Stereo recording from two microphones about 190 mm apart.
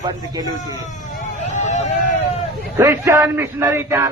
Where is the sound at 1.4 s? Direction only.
35° left (ahead or behind).